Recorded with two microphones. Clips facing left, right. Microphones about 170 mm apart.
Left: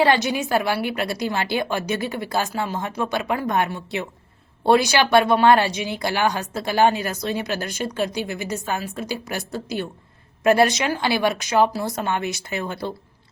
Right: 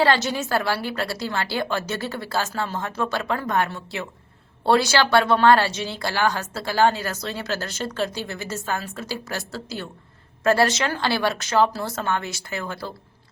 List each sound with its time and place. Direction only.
0.0 s speech: 15° left (ahead or behind)